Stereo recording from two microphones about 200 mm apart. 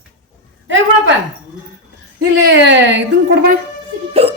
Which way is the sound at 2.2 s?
60° right (ahead or behind).